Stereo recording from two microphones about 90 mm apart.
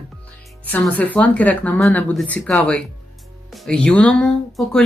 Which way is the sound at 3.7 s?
10° left (ahead or behind).